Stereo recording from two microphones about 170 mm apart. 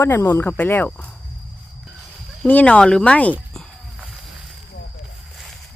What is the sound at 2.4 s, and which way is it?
Speech, 10° left (ahead or behind).